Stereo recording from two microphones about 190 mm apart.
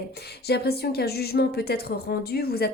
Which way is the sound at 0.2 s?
60° left (ahead or behind).